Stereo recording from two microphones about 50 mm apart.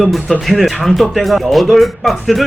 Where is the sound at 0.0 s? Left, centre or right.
Centre.